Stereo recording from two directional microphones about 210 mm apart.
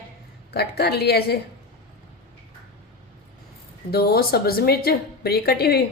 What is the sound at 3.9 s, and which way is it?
Speech, 45° left (ahead or behind).